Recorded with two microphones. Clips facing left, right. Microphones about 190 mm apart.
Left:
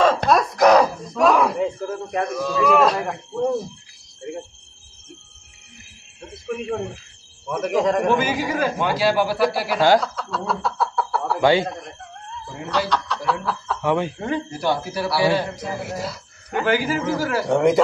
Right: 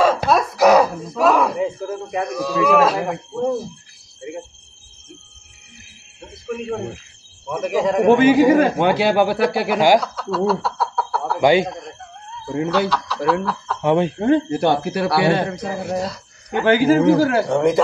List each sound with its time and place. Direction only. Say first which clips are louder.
0.0 s a sound: right 1 dB; 5° right (ahead or behind)
4.2 s cricket: even; 5° right (ahead or behind)
6.4 s a man's voice: right 1 dB; centre (ahead or behind)
8.2 s a man's voice: right 10 dB; 60° right (ahead or behind)
9.8 s speech: right 1 dB; 15° right (ahead or behind)
10.1 s a sound: right 7 dB; 5° right (ahead or behind)
11.4 s speech: right 3 dB; 15° right (ahead or behind)
12.9 s speech: right 4 dB; centre (ahead or behind)
13.7 s speech: right 5 dB; 20° right (ahead or behind)
14.3 s a man's voice: right 7 dB; 60° right (ahead or behind)
15.5 s speech: right 5 dB; centre (ahead or behind)
17.0 s a man's voice: right 9 dB; 60° right (ahead or behind)
17.5 s a man's voice: even; centre (ahead or behind)